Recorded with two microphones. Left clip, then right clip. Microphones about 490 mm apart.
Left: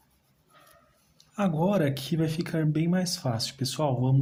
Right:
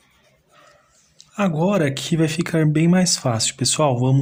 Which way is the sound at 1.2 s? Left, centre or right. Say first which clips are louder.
Right 7 dB; left.